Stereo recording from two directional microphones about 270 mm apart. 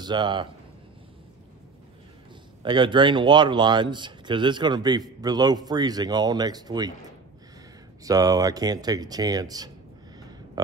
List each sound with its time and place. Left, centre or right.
0.0 s speech: centre
2.6 s speech: centre
8.0 s speech: centre